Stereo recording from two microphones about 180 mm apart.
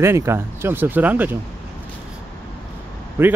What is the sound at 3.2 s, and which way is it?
Speech, 15° right (ahead or behind).